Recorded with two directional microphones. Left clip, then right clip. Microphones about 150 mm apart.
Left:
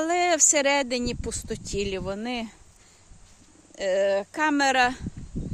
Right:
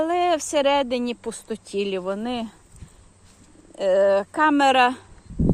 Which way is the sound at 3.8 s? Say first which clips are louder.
Right 5 dB; centre (ahead or behind).